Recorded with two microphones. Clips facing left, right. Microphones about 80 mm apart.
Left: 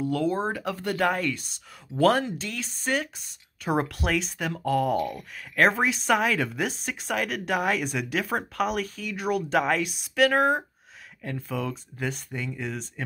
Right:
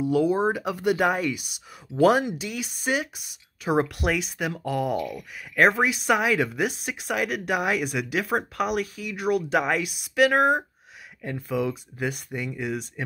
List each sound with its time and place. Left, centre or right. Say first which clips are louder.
0.0 s speech: right 4 dB; centre
4.9 s speech: left 1 dB; left
5.6 s speech: right 2 dB; centre